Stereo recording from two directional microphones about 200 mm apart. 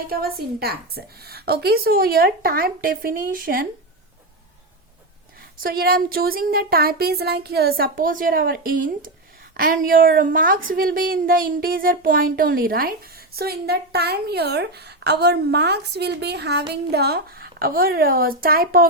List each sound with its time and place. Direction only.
0.1 s a woman's voice: 50° right (ahead or behind)
5.4 s a woman's voice: 45° right (ahead or behind)